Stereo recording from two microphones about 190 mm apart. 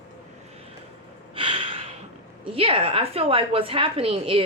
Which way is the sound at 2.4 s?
30° right (ahead or behind).